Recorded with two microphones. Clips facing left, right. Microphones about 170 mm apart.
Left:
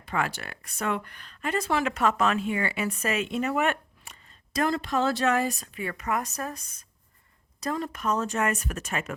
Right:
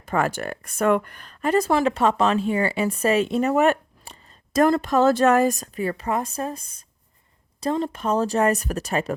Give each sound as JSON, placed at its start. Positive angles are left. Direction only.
{"t": 0.0, "sound": "speech", "side_deg": -45}
{"t": 4.5, "sound": "speech", "side_deg": -45}